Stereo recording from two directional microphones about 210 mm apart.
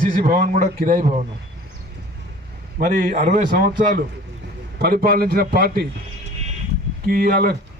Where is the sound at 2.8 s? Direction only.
35° right (ahead or behind).